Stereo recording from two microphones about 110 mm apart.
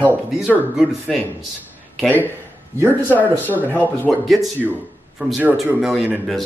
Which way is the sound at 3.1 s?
15° left (ahead or behind).